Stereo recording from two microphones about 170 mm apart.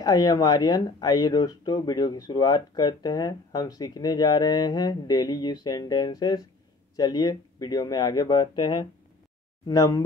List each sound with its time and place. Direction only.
0.0 s speech: 20° left (ahead or behind)